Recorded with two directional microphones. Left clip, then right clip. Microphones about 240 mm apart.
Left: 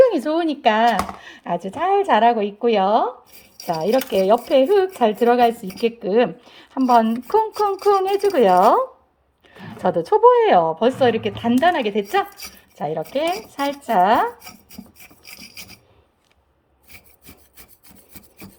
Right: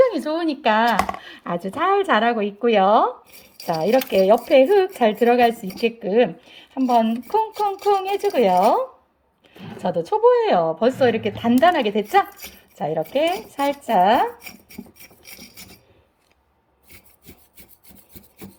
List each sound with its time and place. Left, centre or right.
0.0 s speech: centre
8.1 s a woman's voice: left
9.6 s speech: centre